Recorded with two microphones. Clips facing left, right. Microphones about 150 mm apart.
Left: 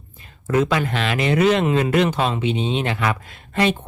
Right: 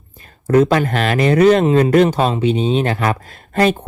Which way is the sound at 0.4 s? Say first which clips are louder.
Right 6 dB; 40° right (ahead or behind).